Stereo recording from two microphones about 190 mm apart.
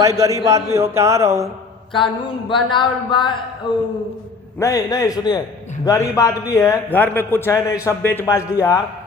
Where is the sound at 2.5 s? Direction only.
25° left (ahead or behind).